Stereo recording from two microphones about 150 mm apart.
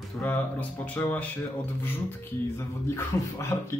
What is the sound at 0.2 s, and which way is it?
Speech, 10° left (ahead or behind).